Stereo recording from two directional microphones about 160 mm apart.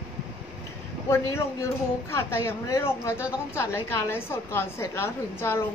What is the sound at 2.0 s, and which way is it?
A woman's voice, 15° left (ahead or behind).